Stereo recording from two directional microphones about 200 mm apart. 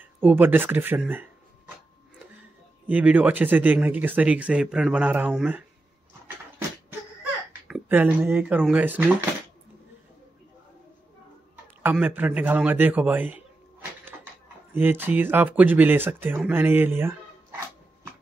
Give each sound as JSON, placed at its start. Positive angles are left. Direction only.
{"t": 0.2, "sound": "speech", "side_deg": -10}
{"t": 2.9, "sound": "speech", "side_deg": -10}
{"t": 7.6, "sound": "speech", "side_deg": -5}
{"t": 11.8, "sound": "speech", "side_deg": -10}
{"t": 14.1, "sound": "a sound", "side_deg": -10}
{"t": 14.7, "sound": "speech", "side_deg": -10}